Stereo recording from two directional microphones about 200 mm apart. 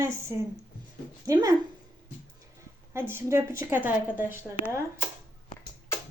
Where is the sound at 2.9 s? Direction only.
10° right (ahead or behind).